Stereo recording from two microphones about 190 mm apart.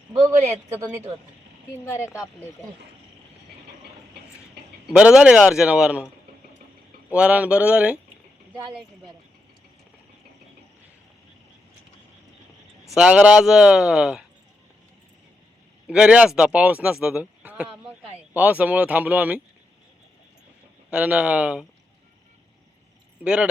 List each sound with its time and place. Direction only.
2.1 s speech: 15° left (ahead or behind)
4.9 s speech: 5° right (ahead or behind)
7.1 s speech: 5° right (ahead or behind)
12.9 s speech: 5° right (ahead or behind)
15.9 s speech: 5° right (ahead or behind)
20.9 s speech: 5° right (ahead or behind)
23.2 s speech: 5° right (ahead or behind)